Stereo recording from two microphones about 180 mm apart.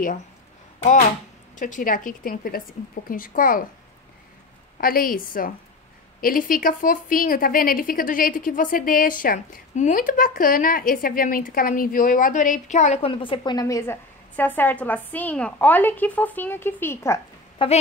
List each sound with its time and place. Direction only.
1.6 s a woman's voice: 45° left (ahead or behind)
4.7 s a woman's voice: 55° left (ahead or behind); by 17.2 s 15° left (ahead or behind)
17.6 s a woman's voice: 30° left (ahead or behind)